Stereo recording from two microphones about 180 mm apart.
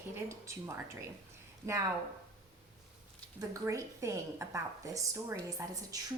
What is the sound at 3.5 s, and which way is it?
Speech, 15° right (ahead or behind).